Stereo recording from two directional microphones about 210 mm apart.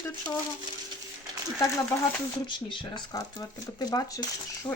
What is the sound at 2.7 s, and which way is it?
Speech, 20° left (ahead or behind).